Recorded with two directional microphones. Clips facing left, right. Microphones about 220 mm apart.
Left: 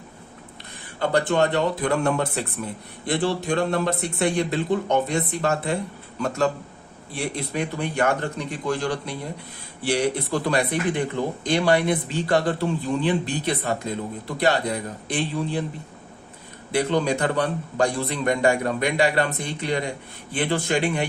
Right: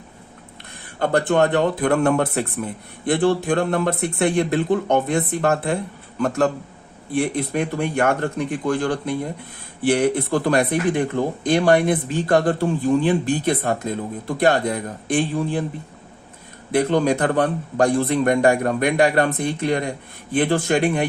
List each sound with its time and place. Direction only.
0.9 s speech: 55° right (ahead or behind)
16.7 s speech: 50° right (ahead or behind)